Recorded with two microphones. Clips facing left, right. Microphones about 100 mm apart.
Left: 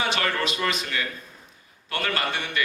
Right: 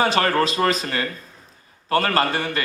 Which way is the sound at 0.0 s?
40° right (ahead or behind).